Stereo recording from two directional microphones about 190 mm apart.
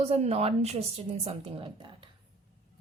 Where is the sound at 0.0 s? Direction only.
35° right (ahead or behind).